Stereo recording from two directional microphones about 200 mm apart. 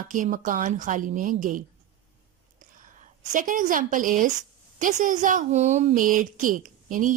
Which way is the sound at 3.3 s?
40° right (ahead or behind).